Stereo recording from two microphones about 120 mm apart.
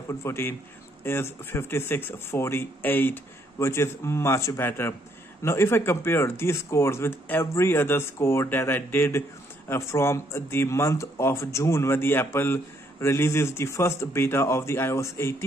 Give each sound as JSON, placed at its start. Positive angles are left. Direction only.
{"t": 0.1, "sound": "speech", "side_deg": 20}